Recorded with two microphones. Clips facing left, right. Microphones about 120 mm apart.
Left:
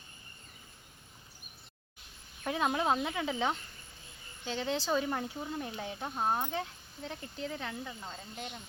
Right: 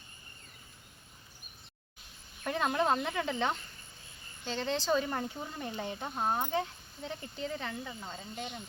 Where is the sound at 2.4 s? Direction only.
5° left (ahead or behind).